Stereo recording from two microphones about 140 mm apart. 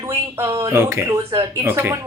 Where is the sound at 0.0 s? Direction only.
15° right (ahead or behind).